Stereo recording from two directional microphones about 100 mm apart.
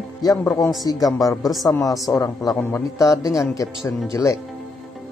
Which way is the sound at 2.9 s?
35° left (ahead or behind).